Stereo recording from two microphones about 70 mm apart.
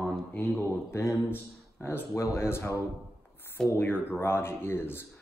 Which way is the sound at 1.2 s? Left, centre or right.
Left.